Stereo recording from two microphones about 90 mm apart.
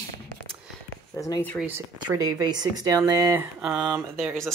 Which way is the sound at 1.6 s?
30° right (ahead or behind).